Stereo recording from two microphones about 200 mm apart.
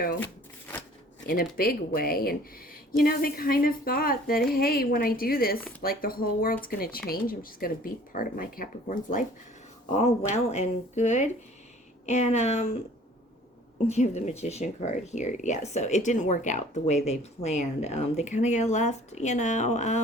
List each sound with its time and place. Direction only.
1.3 s a woman's voice: 45° left (ahead or behind)
13.8 s speech: 35° left (ahead or behind)